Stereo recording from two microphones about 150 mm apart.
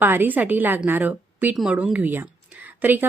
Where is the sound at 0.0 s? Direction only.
15° right (ahead or behind).